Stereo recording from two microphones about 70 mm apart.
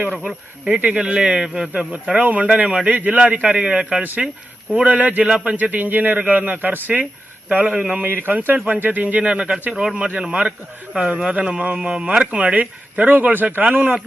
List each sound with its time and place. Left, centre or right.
0.3 s a man's voice: centre
8.0 s a man's voice: right